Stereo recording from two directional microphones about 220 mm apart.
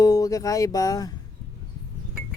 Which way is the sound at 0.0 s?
15° left (ahead or behind).